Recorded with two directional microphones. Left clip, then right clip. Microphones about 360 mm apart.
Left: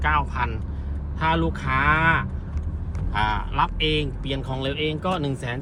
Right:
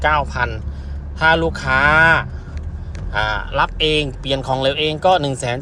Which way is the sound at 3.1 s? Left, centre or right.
Centre.